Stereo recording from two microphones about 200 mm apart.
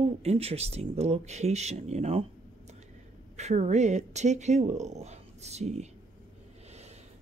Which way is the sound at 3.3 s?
35° right (ahead or behind).